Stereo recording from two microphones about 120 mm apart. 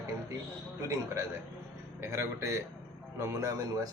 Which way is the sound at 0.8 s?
25° right (ahead or behind).